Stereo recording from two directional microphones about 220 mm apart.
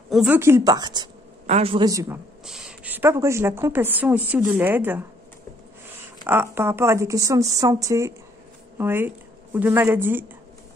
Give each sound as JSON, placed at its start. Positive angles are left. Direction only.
{"t": 0.1, "sound": "a woman's voice", "side_deg": -5}
{"t": 2.4, "sound": "a woman's voice", "side_deg": -5}
{"t": 6.2, "sound": "a woman's voice", "side_deg": -10}